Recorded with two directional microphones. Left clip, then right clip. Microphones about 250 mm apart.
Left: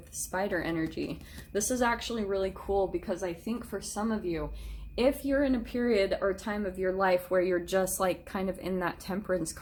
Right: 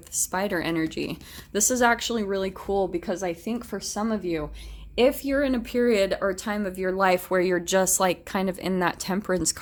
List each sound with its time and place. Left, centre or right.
0.3 s speech: right